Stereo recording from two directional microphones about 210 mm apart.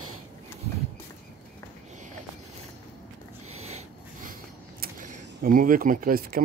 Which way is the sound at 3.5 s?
30° right (ahead or behind).